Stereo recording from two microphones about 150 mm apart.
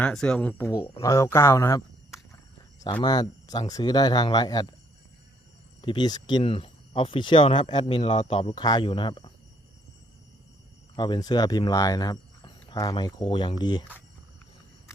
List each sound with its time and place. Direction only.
0.0 s speech: 5° left (ahead or behind)
0.7 s speech: 30° left (ahead or behind)
2.8 s speech: 30° left (ahead or behind)
5.8 s speech: 30° left (ahead or behind)
8.4 s speech: 35° left (ahead or behind)
10.9 s speech: 30° left (ahead or behind)